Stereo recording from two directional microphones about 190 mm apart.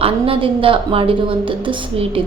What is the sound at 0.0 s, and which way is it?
A woman's voice, 30° right (ahead or behind).